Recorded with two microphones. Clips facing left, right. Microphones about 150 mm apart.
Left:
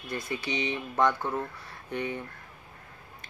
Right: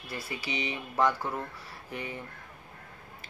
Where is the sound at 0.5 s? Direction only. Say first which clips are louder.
Left 3 dB; 30° left (ahead or behind).